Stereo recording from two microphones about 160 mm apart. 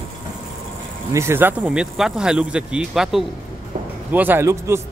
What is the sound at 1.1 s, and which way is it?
Speech, 15° right (ahead or behind).